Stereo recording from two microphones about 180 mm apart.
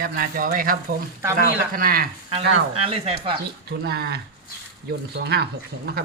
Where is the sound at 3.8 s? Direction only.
60° right (ahead or behind).